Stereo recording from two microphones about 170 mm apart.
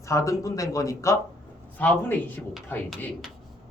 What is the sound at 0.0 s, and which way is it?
Speech, 15° left (ahead or behind).